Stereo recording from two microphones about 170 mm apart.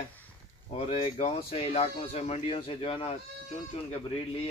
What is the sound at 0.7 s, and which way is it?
Speech, 35° left (ahead or behind).